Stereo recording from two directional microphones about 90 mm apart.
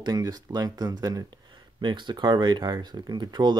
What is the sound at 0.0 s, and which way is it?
Speech, 45° right (ahead or behind).